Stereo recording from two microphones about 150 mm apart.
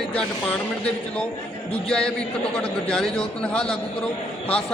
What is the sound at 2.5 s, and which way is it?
A man's voice, 5° left (ahead or behind).